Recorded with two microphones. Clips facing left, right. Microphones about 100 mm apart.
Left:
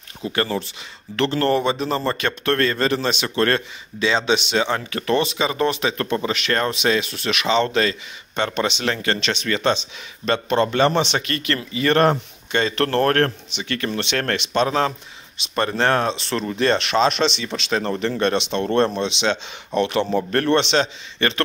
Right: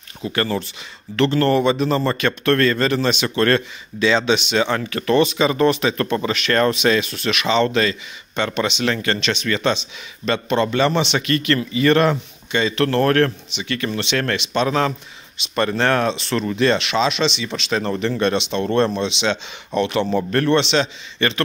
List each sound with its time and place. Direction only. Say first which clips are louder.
0.2 s speech: right 1 dB; 25° left (ahead or behind); by 14.7 s 45° left (ahead or behind)
14.7 s speech: right 1 dB; 30° left (ahead or behind); by 17.5 s 45° left (ahead or behind)
17.6 s speech: even; 35° left (ahead or behind)